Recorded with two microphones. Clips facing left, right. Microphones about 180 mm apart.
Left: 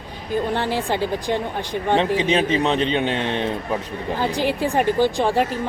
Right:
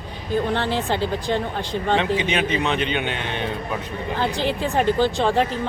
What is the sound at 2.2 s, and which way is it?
A man's voice, 35° left (ahead or behind).